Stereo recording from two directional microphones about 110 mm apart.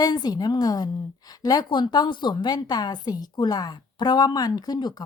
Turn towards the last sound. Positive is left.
turn(degrees=40)  # may be behind; listen again after turning